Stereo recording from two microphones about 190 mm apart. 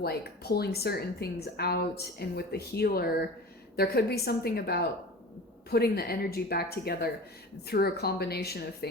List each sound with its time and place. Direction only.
0.0 s a woman's voice: 55° left (ahead or behind)